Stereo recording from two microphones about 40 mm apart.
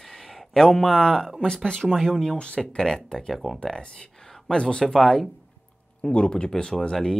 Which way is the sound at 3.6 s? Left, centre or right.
Left.